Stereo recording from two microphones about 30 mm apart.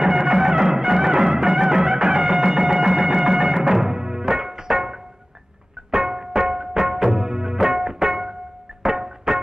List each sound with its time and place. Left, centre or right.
0.0 s music: centre